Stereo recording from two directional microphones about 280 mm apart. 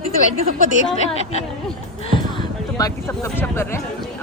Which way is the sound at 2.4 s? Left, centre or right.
Centre.